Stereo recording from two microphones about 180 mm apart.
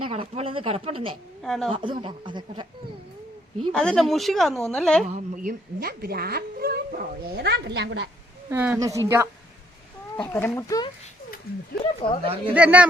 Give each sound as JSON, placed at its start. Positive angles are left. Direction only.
{"t": 0.0, "sound": "speech", "side_deg": -30}
{"t": 1.4, "sound": "speech", "side_deg": 0}
{"t": 1.7, "sound": "speech", "side_deg": -25}
{"t": 3.7, "sound": "speech", "side_deg": 5}
{"t": 5.0, "sound": "a woman's voice", "side_deg": -40}
{"t": 8.4, "sound": "a woman's voice", "side_deg": -10}
{"t": 10.2, "sound": "speech", "side_deg": 15}
{"t": 11.5, "sound": "speech", "side_deg": 60}
{"t": 11.8, "sound": "speech", "side_deg": 30}
{"t": 12.5, "sound": "a woman's voice", "side_deg": -10}